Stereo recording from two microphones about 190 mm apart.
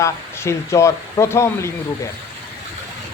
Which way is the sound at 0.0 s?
15° left (ahead or behind).